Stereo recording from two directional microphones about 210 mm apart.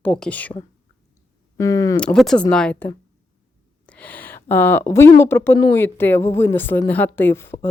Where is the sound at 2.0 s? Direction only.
5° left (ahead or behind).